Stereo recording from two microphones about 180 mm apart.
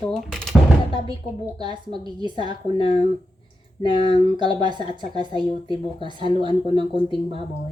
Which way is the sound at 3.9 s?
25° right (ahead or behind).